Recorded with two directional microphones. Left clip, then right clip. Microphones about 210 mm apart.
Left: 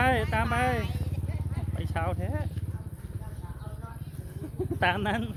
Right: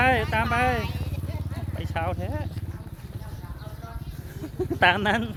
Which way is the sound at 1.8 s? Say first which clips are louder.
Right 3 dB; centre (ahead or behind).